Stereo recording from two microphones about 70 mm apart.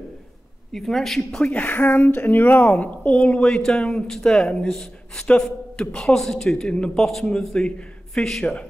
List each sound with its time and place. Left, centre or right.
0.7 s a woman's voice: centre
1.4 s a man's voice: centre